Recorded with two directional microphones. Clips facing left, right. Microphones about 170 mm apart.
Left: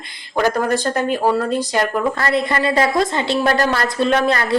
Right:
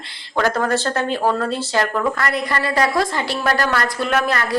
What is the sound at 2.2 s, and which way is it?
A woman's voice, 25° left (ahead or behind).